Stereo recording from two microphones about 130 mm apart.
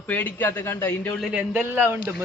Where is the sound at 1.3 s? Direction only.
15° right (ahead or behind).